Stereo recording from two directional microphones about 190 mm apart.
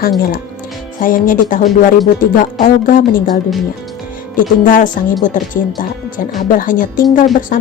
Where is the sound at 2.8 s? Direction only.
45° left (ahead or behind).